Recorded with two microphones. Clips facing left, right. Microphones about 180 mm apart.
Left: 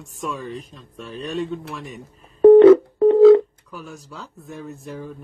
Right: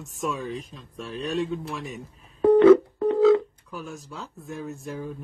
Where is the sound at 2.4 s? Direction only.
30° left (ahead or behind).